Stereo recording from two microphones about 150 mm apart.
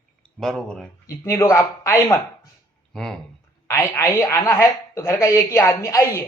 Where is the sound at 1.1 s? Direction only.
20° left (ahead or behind).